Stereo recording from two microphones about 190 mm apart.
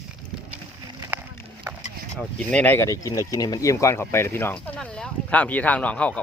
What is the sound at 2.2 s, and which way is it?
Speech, 5° left (ahead or behind).